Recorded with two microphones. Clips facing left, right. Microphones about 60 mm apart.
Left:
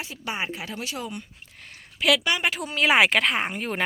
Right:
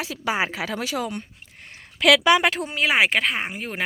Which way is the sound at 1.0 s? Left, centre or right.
Right.